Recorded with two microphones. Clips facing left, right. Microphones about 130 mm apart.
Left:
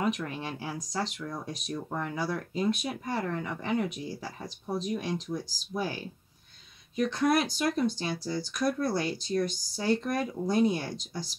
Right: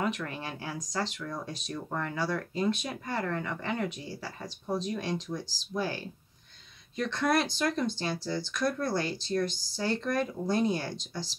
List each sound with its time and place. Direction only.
0.0 s speech: 15° left (ahead or behind)
7.1 s speech: 10° left (ahead or behind)